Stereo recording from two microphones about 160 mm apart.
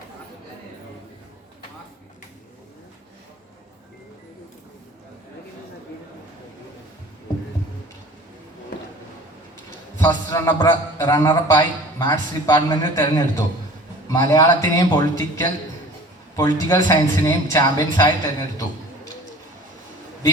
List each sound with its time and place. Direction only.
10.0 s a man's voice: 25° left (ahead or behind)